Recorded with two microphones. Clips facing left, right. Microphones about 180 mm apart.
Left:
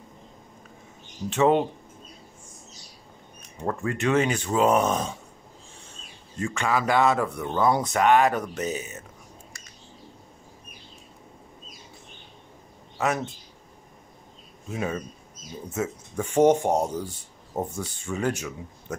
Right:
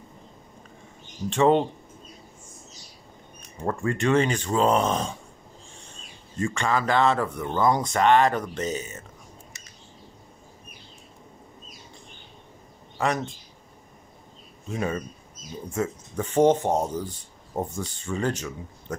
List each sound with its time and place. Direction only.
1.3 s speech: 5° left (ahead or behind)
3.6 s speech: 5° left (ahead or behind)
6.4 s speech: 5° left (ahead or behind)
12.9 s speech: 5° left (ahead or behind)
14.7 s speech: 5° left (ahead or behind)